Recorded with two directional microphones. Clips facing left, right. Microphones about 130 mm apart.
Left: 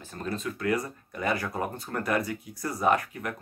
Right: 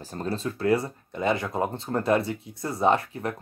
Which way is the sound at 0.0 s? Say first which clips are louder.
Right 3 dB; 35° right (ahead or behind).